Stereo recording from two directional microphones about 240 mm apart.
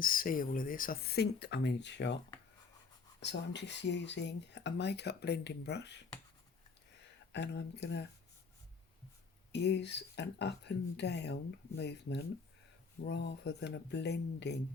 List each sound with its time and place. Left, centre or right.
0.0 s speech: left
3.2 s speech: left
7.3 s speech: left
9.5 s speech: left